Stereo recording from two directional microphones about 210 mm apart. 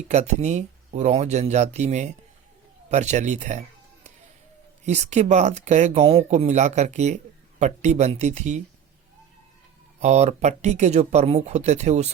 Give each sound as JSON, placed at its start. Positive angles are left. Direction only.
{"t": 0.1, "sound": "speech", "side_deg": -35}
{"t": 4.9, "sound": "speech", "side_deg": -35}
{"t": 10.0, "sound": "speech", "side_deg": -35}